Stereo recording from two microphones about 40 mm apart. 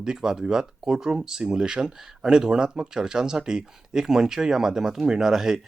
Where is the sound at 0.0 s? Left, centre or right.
Centre.